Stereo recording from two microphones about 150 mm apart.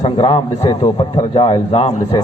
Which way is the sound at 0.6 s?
25° left (ahead or behind).